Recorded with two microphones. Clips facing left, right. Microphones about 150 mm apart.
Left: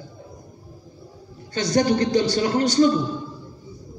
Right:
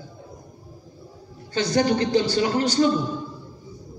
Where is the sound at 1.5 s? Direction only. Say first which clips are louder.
Left 1 dB; 45° left (ahead or behind).